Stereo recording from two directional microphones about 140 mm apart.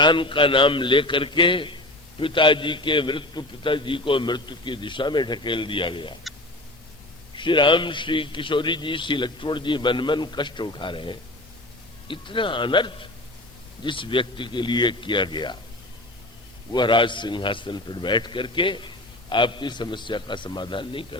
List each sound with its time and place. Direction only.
0.0 s a man's voice: 35° left (ahead or behind)
7.3 s a man's voice: 35° left (ahead or behind)
16.7 s a man's voice: 35° left (ahead or behind)